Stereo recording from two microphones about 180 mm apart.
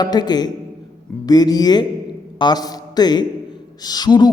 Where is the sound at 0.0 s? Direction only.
20° left (ahead or behind).